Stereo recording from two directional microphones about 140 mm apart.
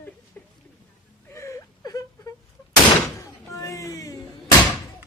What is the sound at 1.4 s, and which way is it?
Whimper, 20° left (ahead or behind).